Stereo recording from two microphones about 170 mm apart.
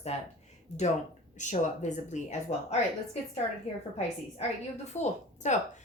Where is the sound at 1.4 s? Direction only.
45° left (ahead or behind).